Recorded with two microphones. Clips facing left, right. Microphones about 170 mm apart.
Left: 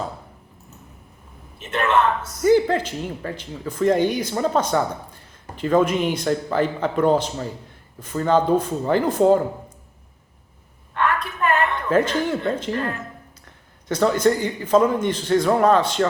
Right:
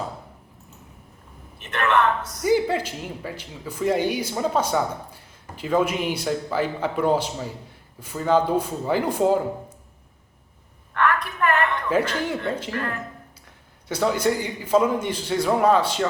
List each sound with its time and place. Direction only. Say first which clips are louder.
1.7 s a woman's voice: left 1 dB; 25° left (ahead or behind)
2.5 s speech: left 4 dB; 10° right (ahead or behind)
10.9 s a sound: even; 25° left (ahead or behind)
11.9 s speech: left 5 dB; 10° right (ahead or behind)
12.7 s a woman's voice: left 3 dB; 25° left (ahead or behind)
13.8 s speech: left 4 dB; 10° right (ahead or behind)